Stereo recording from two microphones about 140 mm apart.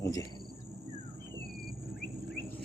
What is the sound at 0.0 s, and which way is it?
Cricket, 20° left (ahead or behind).